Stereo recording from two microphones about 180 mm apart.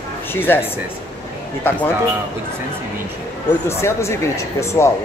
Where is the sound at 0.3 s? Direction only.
10° left (ahead or behind).